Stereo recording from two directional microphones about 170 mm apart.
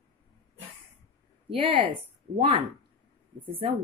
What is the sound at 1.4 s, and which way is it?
Speech, 30° right (ahead or behind).